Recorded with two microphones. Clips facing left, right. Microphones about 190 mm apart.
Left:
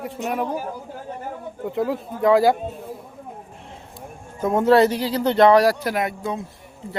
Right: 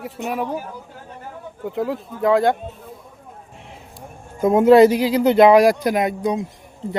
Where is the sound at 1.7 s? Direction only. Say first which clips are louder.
Even; centre (ahead or behind).